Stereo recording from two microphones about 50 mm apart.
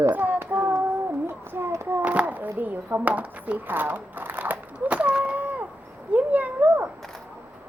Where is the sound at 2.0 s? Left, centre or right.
Right.